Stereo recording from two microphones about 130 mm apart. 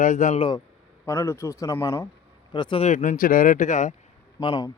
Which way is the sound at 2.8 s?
70° left (ahead or behind).